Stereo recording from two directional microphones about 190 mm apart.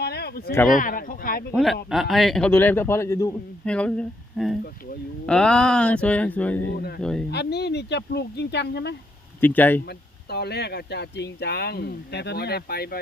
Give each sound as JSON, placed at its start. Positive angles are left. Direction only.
{"t": 0.0, "sound": "a sound", "side_deg": 60}
{"t": 0.7, "sound": "speech", "side_deg": 45}
{"t": 1.9, "sound": "a man's voice", "side_deg": 0}
{"t": 3.7, "sound": "speech", "side_deg": 5}
{"t": 7.3, "sound": "speech", "side_deg": 60}
{"t": 9.4, "sound": "a man's voice", "side_deg": 10}
{"t": 10.2, "sound": "speech", "side_deg": 60}